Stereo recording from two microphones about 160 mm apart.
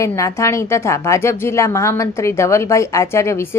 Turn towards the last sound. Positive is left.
turn(degrees=15)  # may be behind; listen again after turning